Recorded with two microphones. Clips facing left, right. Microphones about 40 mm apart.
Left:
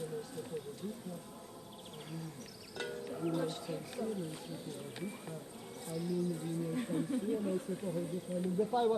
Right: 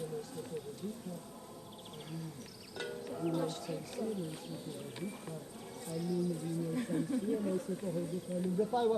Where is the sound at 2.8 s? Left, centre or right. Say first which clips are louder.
Even; centre.